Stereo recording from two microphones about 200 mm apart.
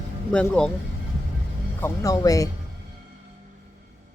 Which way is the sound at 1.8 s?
15° left (ahead or behind).